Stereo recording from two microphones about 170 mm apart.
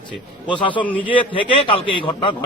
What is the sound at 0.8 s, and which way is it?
Speech, 10° left (ahead or behind).